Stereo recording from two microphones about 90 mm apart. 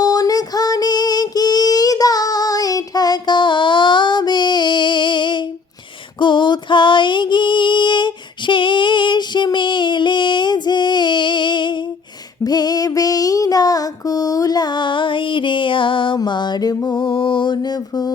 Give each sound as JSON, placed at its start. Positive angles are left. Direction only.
{"t": 0.0, "sound": "female singing", "side_deg": 45}
{"t": 12.5, "sound": "music", "side_deg": 45}
{"t": 17.0, "sound": "mantra", "side_deg": 65}